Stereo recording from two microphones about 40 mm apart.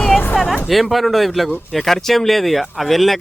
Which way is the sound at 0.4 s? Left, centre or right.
Centre.